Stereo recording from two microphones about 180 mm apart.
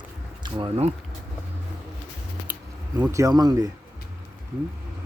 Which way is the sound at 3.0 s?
15° right (ahead or behind).